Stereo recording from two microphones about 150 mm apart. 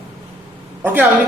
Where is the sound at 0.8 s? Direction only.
10° right (ahead or behind).